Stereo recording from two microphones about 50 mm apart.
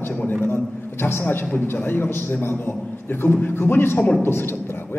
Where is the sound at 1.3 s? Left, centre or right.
Left.